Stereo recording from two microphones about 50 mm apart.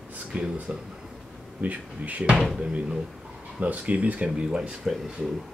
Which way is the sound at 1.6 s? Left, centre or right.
Right.